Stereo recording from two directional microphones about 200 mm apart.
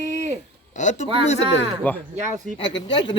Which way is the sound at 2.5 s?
25° left (ahead or behind).